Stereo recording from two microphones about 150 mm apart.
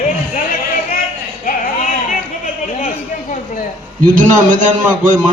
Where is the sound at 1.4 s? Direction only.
60° left (ahead or behind).